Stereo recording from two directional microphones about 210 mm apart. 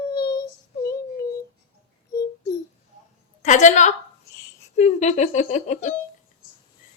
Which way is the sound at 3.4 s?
35° left (ahead or behind).